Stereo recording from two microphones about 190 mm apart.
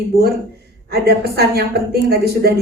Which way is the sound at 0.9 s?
55° right (ahead or behind).